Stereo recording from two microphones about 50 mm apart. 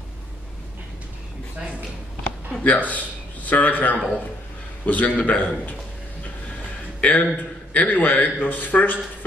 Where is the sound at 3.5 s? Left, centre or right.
Left.